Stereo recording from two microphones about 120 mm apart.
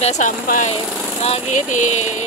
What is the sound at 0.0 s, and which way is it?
Speech, 75° left (ahead or behind).